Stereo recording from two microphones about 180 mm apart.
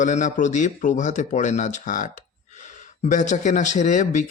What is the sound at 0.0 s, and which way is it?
Speech, 40° left (ahead or behind).